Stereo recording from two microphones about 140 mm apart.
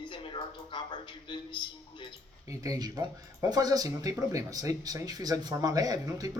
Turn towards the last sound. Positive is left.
turn(degrees=-25)  # may be behind; listen again after turning